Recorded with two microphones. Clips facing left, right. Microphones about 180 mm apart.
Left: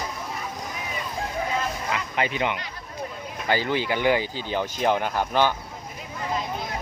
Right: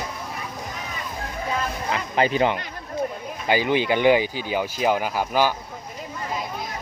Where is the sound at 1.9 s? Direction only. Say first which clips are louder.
Right 7 dB; 35° right (ahead or behind).